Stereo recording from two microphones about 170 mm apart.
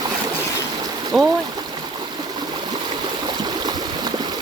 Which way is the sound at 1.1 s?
Centre (ahead or behind).